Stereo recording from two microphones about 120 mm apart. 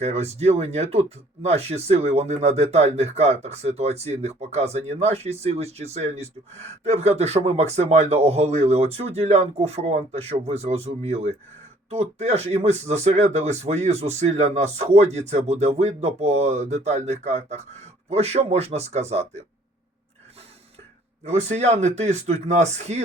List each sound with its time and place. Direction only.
0.0 s speech: 65° right (ahead or behind)
21.2 s speech: 65° right (ahead or behind)